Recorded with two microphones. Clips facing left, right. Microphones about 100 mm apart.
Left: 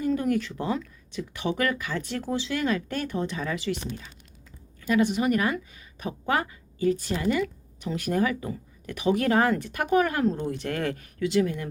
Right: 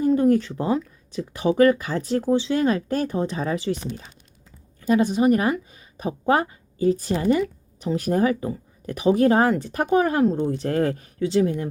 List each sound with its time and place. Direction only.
0.0 s a woman's voice: 30° right (ahead or behind)